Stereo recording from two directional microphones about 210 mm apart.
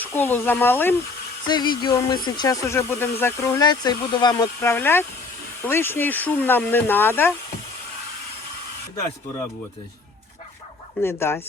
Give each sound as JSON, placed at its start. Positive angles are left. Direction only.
{"t": 0.0, "sound": "speech", "side_deg": 10}
{"t": 1.5, "sound": "speech", "side_deg": 20}
{"t": 11.0, "sound": "speech", "side_deg": 10}